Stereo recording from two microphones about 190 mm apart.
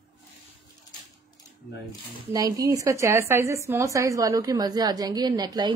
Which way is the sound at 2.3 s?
20° right (ahead or behind).